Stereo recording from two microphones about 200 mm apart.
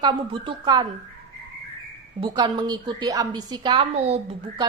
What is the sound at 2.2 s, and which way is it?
A woman's voice, 20° right (ahead or behind).